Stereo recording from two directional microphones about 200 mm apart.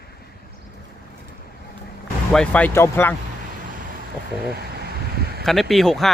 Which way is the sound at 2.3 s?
5° left (ahead or behind).